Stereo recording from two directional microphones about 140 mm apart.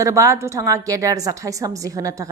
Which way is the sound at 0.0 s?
20° right (ahead or behind).